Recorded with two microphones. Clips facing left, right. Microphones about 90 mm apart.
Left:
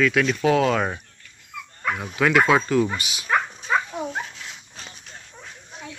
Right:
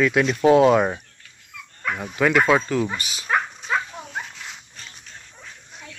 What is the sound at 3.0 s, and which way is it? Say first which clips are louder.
Speech: even; 35° right (ahead or behind).